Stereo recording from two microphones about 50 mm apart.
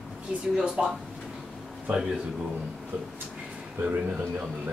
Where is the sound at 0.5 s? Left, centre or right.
Centre.